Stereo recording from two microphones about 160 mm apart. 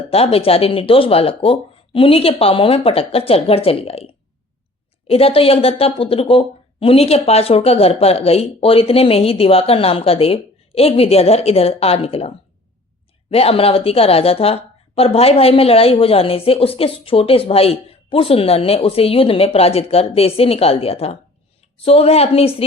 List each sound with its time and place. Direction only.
0.1 s a woman's voice: 40° left (ahead or behind)
13.3 s a woman's voice: 35° left (ahead or behind)